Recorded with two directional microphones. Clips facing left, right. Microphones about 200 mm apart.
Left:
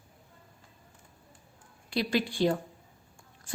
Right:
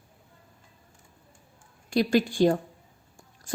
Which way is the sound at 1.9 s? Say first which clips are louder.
Right 6 dB; 45° right (ahead or behind).